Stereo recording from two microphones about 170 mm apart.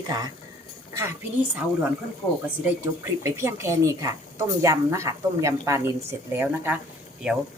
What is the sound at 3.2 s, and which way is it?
A woman's voice, 15° right (ahead or behind).